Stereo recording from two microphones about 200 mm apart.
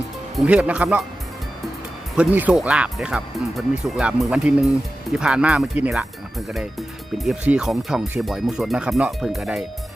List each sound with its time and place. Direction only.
0.3 s speech: 5° right (ahead or behind)
2.1 s speech: 5° right (ahead or behind)